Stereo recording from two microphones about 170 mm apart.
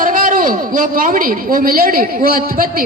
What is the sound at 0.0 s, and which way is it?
A man's voice, 55° right (ahead or behind).